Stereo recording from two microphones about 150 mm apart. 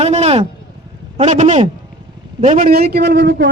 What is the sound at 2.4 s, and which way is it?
Speech, 65° right (ahead or behind).